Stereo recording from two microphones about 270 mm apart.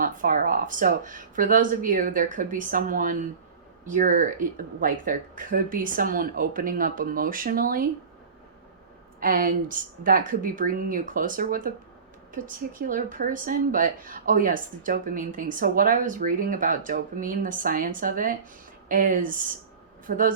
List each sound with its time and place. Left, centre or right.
0.0 s speech: right
9.2 s speech: right